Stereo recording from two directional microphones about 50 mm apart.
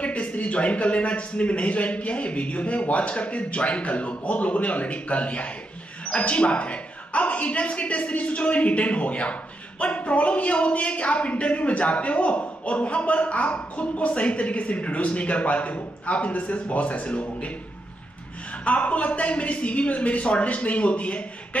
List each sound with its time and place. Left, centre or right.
0.0 s a woman's voice: left
18.6 s a woman's voice: left